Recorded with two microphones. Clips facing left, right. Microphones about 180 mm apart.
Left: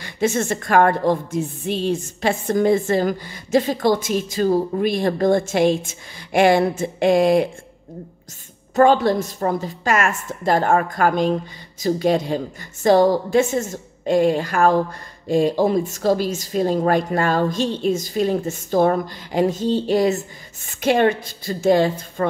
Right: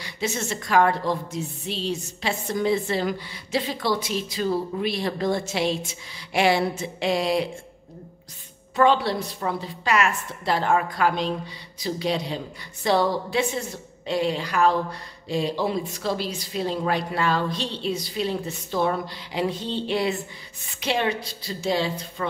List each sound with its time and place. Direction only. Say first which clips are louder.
0.0 s a woman's voice: left 8 dB; 50° left (ahead or behind)
8.7 s a woman's voice: left 5 dB; 45° left (ahead or behind)